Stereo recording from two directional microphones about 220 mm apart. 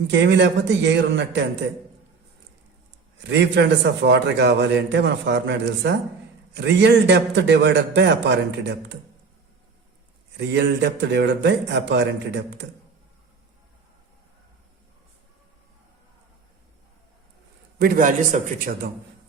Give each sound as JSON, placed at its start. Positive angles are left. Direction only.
{"t": 0.1, "sound": "a man's voice", "side_deg": -55}
{"t": 3.2, "sound": "a man's voice", "side_deg": -55}
{"t": 10.3, "sound": "a man's voice", "side_deg": -50}
{"t": 17.7, "sound": "a man's voice", "side_deg": -40}